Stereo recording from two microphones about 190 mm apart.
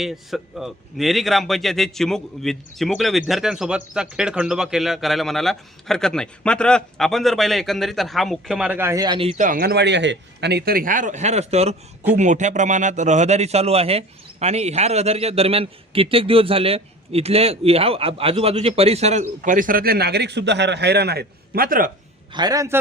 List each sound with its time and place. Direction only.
0.0 s a man's voice: centre (ahead or behind); by 9.3 s 25° right (ahead or behind)
9.4 s a man's voice: 50° right (ahead or behind)
22.3 s a man's voice: 20° right (ahead or behind)